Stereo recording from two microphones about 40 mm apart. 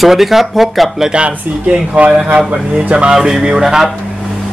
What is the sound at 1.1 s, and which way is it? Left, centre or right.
Speech, right.